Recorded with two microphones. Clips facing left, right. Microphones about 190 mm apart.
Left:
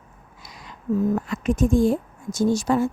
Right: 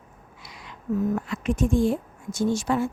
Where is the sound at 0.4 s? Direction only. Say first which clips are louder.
Left 3 dB; 40° left (ahead or behind).